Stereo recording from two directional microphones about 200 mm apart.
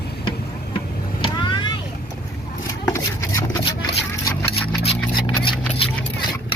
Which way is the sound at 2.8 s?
15° left (ahead or behind).